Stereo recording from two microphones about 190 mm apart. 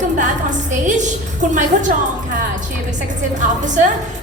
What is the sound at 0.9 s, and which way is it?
A woman's voice, 40° right (ahead or behind).